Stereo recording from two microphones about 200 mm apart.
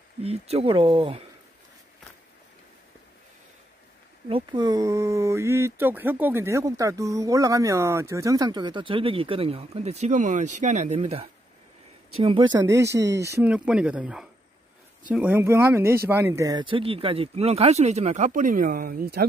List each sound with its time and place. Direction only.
0.2 s speech: 30° right (ahead or behind)
4.3 s speech: 20° right (ahead or behind); by 19.2 s 45° right (ahead or behind)